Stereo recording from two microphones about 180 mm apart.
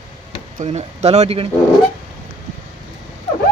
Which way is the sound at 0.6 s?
35° right (ahead or behind).